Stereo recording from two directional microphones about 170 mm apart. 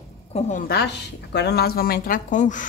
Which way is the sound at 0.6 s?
75° left (ahead or behind).